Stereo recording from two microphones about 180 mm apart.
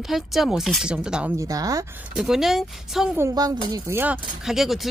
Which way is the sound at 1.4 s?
20° right (ahead or behind).